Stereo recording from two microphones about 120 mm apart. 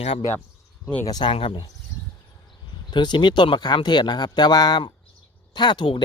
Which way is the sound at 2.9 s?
40° left (ahead or behind).